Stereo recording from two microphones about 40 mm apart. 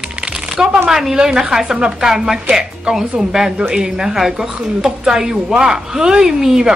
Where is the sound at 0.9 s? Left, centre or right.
Centre.